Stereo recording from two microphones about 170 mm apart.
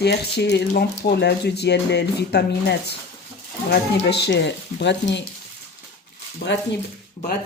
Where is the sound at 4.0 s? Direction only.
85° left.